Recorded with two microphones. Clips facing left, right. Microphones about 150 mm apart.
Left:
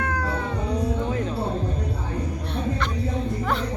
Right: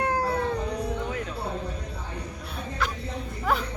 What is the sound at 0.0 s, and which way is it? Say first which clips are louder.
Cat: right 1 dB; 35° right (ahead or behind).